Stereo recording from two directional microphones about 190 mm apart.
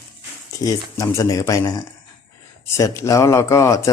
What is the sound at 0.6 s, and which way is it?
Speech, 15° left (ahead or behind).